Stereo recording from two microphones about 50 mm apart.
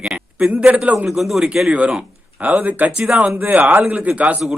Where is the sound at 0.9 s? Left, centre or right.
Centre.